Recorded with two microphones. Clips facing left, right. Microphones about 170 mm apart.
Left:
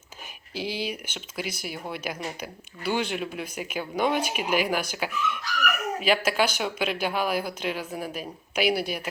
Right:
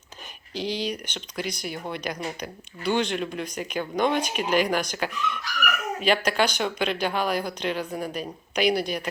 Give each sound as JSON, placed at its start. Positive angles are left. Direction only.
{"t": 0.5, "sound": "speech", "side_deg": 10}